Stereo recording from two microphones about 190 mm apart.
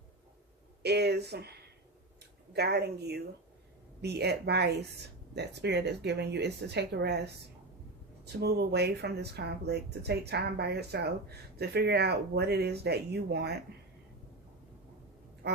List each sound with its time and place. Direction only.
0.8 s speech: 60° right (ahead or behind)
15.4 s quack: 60° right (ahead or behind)